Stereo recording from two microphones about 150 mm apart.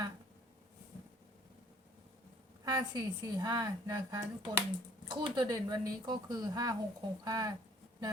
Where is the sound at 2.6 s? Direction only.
25° right (ahead or behind).